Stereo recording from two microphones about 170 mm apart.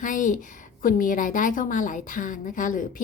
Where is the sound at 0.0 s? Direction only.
50° left (ahead or behind).